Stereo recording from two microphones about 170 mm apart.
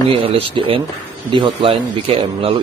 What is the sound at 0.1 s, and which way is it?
A man's voice, 35° right (ahead or behind).